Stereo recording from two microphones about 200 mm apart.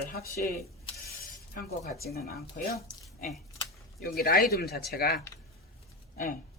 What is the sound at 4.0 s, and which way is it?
Speech, 50° left (ahead or behind).